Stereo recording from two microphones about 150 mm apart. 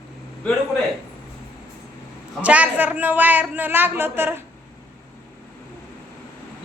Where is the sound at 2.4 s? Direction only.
10° right (ahead or behind).